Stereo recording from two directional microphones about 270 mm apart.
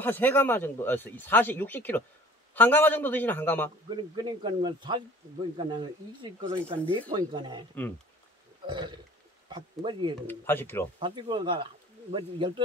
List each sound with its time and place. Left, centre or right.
0.0 s speech: centre
3.9 s speech: centre
8.6 s speech: centre
10.2 s speech: centre
11.0 s speech: centre